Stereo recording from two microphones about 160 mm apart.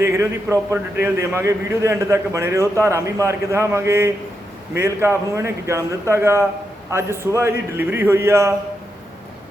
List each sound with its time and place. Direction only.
0.0 s a man's voice: 20° right (ahead or behind)